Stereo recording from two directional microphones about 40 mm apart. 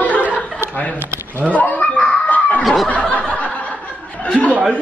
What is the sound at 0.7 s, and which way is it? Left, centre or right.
Speech, left.